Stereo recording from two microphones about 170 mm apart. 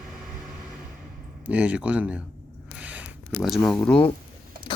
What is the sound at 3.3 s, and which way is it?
Speech, centre (ahead or behind).